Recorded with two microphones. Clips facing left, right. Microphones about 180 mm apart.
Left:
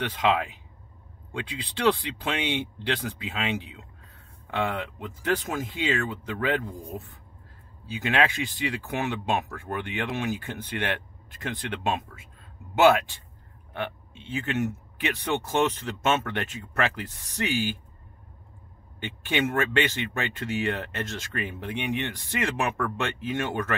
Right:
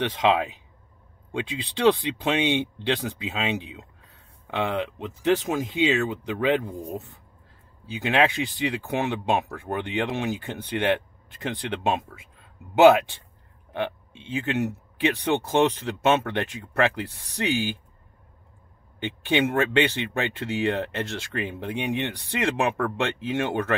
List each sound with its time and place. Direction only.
0.0 s speech: 20° right (ahead or behind)
2.2 s speech: 15° right (ahead or behind)
18.9 s speech: 15° right (ahead or behind)